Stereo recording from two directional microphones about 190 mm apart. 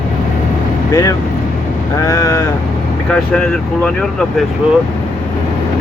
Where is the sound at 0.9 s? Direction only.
20° left (ahead or behind).